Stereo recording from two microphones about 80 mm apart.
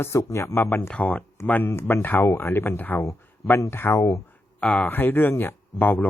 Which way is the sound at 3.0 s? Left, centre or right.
Left.